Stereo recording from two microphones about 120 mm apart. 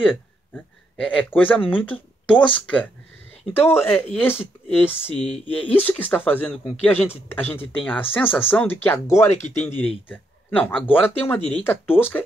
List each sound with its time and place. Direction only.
1.0 s speech: 15° left (ahead or behind)
9.6 s speech: 65° left (ahead or behind)
10.0 s speech: 15° left (ahead or behind)